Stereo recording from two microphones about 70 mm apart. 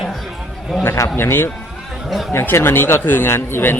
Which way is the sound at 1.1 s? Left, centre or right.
Left.